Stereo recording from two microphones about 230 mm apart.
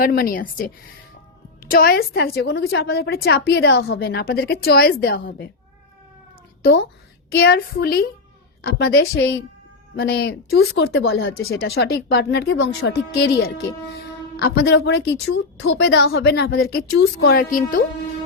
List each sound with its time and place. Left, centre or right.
0.0 s a woman's voice: left
6.6 s a woman's voice: left
10.9 s speech: left
11.2 s a woman's voice: left